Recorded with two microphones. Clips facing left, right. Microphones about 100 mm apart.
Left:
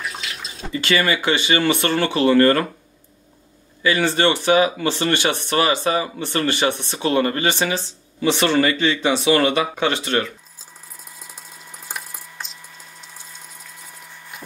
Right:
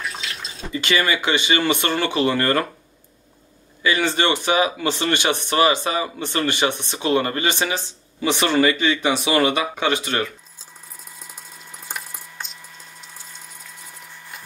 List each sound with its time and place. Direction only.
0.0 s bathtub: 5° left (ahead or behind)
0.7 s speech: 15° right (ahead or behind)
3.8 s speech: 20° right (ahead or behind)
11.8 s a sound: centre (ahead or behind)